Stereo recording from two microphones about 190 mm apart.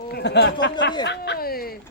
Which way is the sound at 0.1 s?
60° left (ahead or behind).